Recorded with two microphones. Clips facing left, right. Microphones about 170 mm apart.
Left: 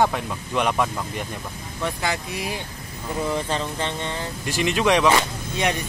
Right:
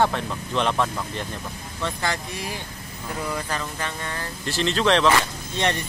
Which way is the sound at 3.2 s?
25° left (ahead or behind).